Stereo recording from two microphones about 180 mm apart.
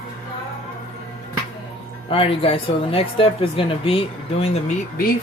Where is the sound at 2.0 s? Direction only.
30° left (ahead or behind).